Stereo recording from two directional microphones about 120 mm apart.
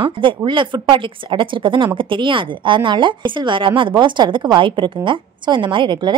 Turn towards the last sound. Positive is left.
turn(degrees=-40)  # may be behind; listen again after turning